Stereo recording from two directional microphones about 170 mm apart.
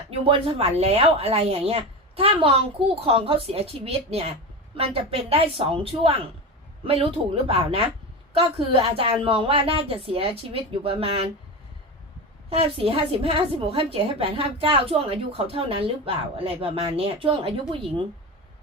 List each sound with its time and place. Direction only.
0.1 s a woman's voice: 35° right (ahead or behind)
12.5 s a woman's voice: 35° right (ahead or behind)